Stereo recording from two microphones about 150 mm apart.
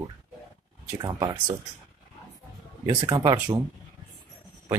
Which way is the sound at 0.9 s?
30° right (ahead or behind).